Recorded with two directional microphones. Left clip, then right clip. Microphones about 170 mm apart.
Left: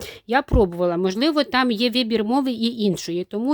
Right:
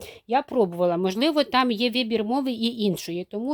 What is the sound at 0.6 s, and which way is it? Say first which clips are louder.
Speech: left 2 dB; 15° left (ahead or behind).